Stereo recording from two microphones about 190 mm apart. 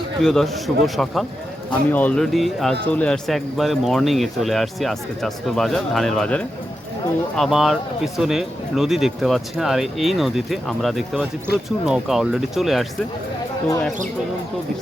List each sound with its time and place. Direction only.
0.2 s speech: 5° left (ahead or behind)
11.5 s speech: 60° left (ahead or behind)
11.9 s speech: 5° right (ahead or behind)